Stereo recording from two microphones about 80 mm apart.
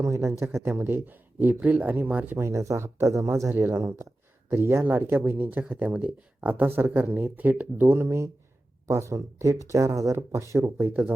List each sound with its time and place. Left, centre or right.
0.0 s speech: right
2.4 s speech: right